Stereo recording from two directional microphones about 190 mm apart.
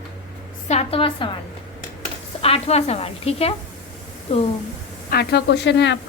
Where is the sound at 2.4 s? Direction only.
35° left (ahead or behind).